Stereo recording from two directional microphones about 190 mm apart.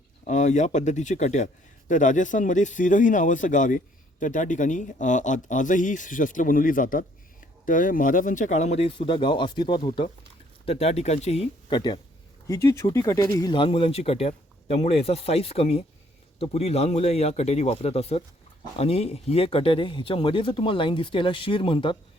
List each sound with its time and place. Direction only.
0.3 s speech: 40° left (ahead or behind)